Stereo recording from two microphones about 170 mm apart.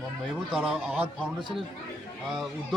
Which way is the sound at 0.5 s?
5° right (ahead or behind).